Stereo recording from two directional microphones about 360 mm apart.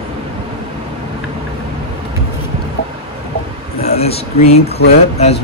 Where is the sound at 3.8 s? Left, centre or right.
Centre.